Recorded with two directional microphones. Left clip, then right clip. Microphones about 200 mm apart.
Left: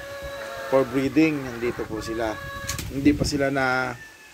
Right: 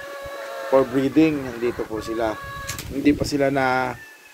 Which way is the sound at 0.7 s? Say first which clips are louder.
Right 3 dB; 5° left (ahead or behind).